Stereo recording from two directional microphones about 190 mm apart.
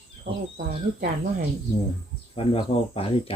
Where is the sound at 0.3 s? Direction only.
40° right (ahead or behind).